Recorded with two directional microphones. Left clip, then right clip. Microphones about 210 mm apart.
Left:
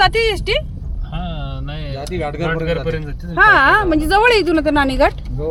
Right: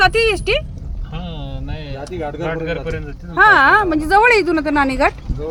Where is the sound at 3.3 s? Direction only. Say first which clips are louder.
Even; centre (ahead or behind).